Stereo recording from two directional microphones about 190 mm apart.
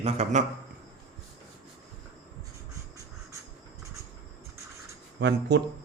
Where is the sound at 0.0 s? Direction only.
35° right (ahead or behind).